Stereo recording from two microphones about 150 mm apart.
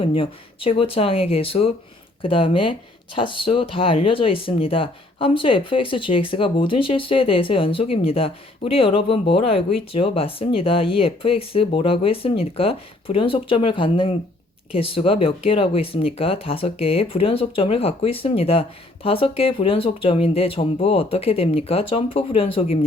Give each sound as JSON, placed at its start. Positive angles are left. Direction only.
{"t": 0.0, "sound": "speech", "side_deg": 40}